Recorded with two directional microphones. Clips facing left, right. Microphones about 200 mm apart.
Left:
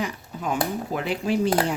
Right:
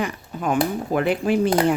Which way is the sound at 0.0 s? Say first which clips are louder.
Right 4 dB; 55° right (ahead or behind).